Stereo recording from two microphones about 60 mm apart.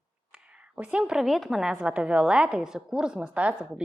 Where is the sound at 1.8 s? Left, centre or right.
Right.